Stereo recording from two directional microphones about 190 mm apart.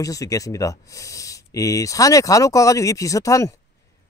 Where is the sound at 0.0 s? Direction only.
20° left (ahead or behind).